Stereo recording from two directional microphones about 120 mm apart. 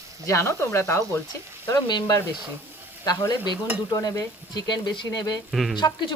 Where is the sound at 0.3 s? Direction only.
25° left (ahead or behind).